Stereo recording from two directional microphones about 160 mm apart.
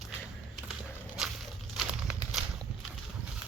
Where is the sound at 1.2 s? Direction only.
5° right (ahead or behind).